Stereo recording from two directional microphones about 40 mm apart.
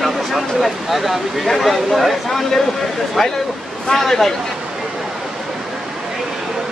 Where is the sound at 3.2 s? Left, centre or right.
Centre.